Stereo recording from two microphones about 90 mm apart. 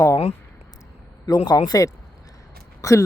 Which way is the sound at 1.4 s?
45° left (ahead or behind).